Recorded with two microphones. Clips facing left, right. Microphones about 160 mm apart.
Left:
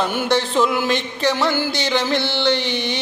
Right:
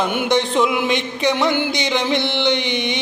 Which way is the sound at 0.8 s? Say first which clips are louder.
Right 1 dB; 15° right (ahead or behind).